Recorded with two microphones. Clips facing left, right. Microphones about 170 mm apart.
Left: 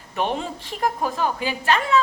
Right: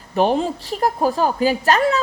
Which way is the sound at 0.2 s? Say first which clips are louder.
Right 7 dB; 35° right (ahead or behind).